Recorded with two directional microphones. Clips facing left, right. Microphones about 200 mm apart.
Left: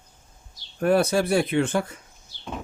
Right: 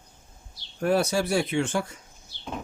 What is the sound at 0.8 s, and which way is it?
Speech, 55° left (ahead or behind).